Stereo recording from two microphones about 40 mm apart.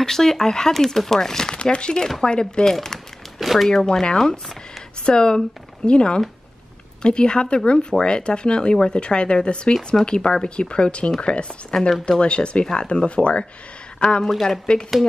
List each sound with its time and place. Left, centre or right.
0.0 s speech: centre
1.6 s speech: left
3.3 s a sound: centre
3.6 s speech: centre
5.0 s speech: left